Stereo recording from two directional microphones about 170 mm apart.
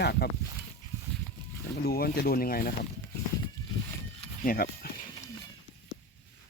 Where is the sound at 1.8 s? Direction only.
65° left (ahead or behind).